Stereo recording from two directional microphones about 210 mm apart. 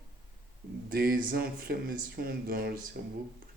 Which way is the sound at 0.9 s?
45° right (ahead or behind).